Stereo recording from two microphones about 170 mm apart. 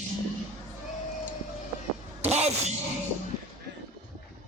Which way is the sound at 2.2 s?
40° right (ahead or behind).